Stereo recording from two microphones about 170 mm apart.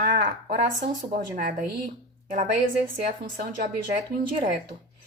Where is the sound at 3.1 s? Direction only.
50° right (ahead or behind).